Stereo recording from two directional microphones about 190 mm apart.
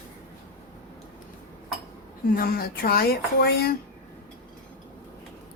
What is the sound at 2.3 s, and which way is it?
Speech, 50° left (ahead or behind).